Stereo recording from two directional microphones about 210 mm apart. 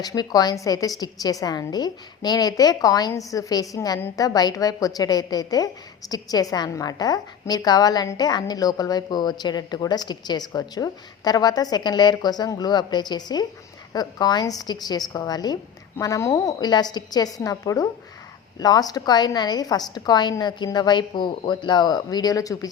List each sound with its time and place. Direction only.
0.0 s a woman's voice: 20° left (ahead or behind)